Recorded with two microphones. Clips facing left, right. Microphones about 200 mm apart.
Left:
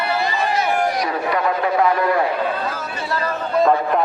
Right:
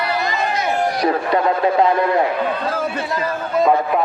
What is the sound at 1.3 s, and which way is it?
Speech, 25° right (ahead or behind).